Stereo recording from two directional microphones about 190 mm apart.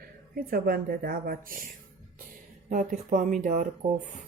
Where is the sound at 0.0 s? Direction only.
50° right (ahead or behind).